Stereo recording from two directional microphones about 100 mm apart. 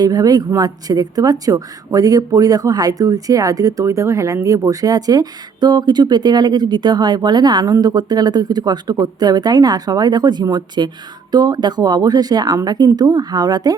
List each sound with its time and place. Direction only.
0.0 s speech: 40° right (ahead or behind)